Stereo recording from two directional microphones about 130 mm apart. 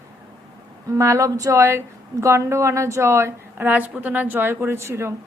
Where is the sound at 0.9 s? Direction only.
25° right (ahead or behind).